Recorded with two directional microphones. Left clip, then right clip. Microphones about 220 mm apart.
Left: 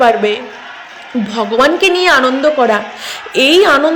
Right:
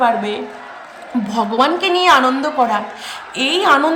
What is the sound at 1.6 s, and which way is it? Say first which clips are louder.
Speech: left 5 dB; 10° left (ahead or behind).